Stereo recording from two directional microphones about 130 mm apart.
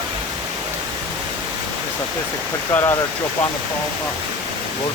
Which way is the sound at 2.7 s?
20° left (ahead or behind).